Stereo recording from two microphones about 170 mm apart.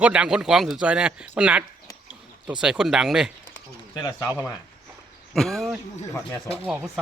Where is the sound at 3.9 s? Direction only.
25° left (ahead or behind).